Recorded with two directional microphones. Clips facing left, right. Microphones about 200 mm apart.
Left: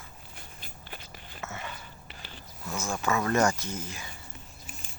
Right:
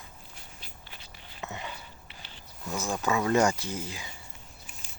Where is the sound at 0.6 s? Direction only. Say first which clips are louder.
Left 4 dB; 50° left (ahead or behind).